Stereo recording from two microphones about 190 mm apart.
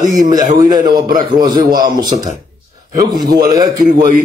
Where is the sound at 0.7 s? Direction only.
20° right (ahead or behind).